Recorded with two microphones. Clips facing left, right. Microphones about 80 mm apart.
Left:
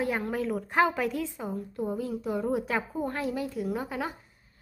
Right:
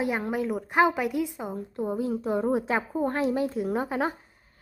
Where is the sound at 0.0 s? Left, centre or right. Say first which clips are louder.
Right 2 dB; centre; by 4.1 s right.